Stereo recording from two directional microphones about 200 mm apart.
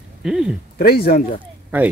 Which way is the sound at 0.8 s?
50° left (ahead or behind).